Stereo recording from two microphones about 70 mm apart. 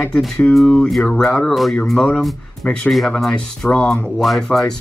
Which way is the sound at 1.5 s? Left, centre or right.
Centre.